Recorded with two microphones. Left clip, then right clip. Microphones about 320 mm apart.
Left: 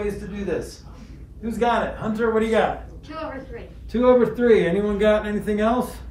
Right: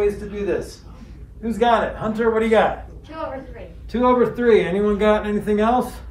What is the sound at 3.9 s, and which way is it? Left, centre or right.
Speech, centre.